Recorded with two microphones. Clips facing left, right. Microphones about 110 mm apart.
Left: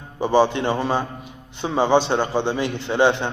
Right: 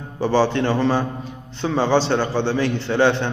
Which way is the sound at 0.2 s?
15° left (ahead or behind).